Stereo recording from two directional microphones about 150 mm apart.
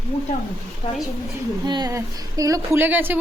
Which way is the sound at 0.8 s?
35° left (ahead or behind).